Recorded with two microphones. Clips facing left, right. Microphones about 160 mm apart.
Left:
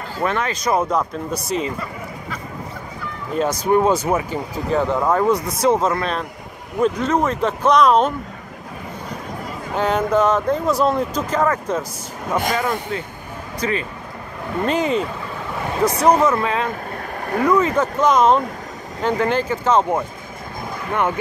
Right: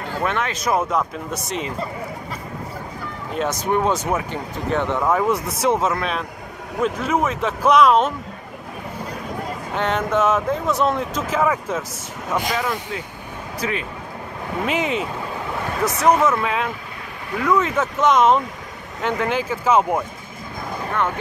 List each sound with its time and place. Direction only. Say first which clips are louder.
0.2 s speech: left 3 dB; centre (ahead or behind)
3.3 s speech: left 4 dB; centre (ahead or behind)
9.8 s speech: left 3 dB; centre (ahead or behind)
16.2 s speech: left 2 dB; centre (ahead or behind)
17.2 s vehicle: left 5 dB; 50° left (ahead or behind)
17.5 s speech: left 2 dB; centre (ahead or behind)